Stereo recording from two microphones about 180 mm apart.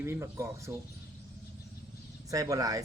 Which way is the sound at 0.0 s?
15° right (ahead or behind).